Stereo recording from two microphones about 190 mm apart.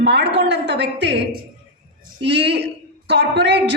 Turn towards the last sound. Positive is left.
turn(degrees=-65)  # may be behind; listen again after turning